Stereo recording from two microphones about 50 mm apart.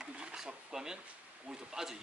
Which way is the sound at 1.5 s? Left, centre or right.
Centre.